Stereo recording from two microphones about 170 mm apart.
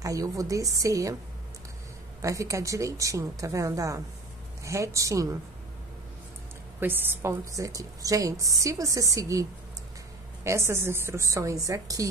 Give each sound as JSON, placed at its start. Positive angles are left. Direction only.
{"t": 0.0, "sound": "a woman's voice", "side_deg": -20}
{"t": 2.2, "sound": "a woman's voice", "side_deg": -20}
{"t": 6.8, "sound": "a woman's voice", "side_deg": -10}